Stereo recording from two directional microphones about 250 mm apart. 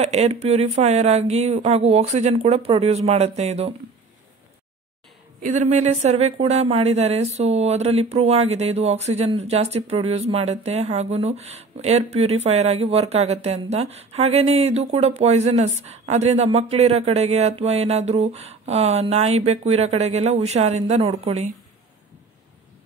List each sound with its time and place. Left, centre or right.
0.0 s speech: right
5.5 s speech: right